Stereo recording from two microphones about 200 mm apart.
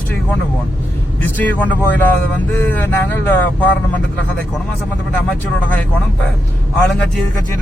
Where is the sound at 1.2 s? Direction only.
10° left (ahead or behind).